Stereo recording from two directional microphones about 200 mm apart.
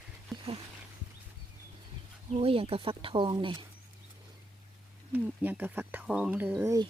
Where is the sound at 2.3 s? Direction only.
30° right (ahead or behind).